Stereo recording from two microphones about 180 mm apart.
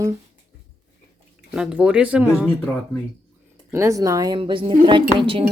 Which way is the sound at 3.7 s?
15° right (ahead or behind).